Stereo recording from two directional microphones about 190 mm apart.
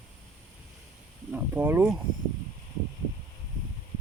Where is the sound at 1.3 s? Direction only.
10° right (ahead or behind).